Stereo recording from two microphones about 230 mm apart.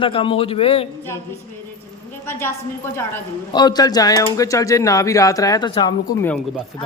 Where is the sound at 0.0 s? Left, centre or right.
Left.